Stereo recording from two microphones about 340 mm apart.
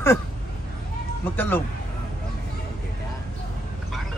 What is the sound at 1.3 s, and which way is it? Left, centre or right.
Speech, centre.